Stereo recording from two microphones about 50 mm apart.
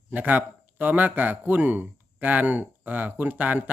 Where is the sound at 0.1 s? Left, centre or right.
Right.